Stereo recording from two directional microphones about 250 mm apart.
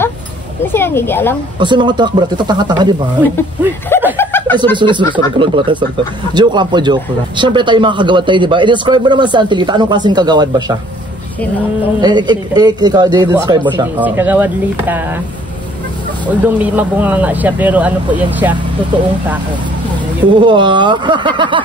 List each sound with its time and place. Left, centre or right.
0.7 s speech: centre
1.6 s speech: centre
4.2 s chuckle: centre
4.7 s speech: centre
12.0 s speech: centre
13.9 s speech: centre
16.3 s speech: centre
20.2 s speech: centre